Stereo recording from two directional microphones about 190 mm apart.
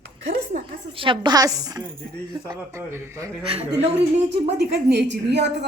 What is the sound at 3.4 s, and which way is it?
Speech, 30° right (ahead or behind).